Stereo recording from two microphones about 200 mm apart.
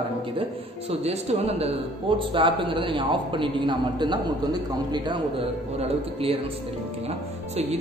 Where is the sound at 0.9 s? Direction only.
30° right (ahead or behind).